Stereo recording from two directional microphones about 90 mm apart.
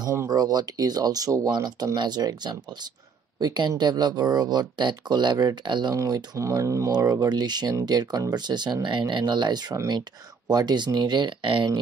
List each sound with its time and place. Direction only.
0.3 s speech: 45° right (ahead or behind)
5.9 s speech: 40° right (ahead or behind); by 11.8 s 65° right (ahead or behind)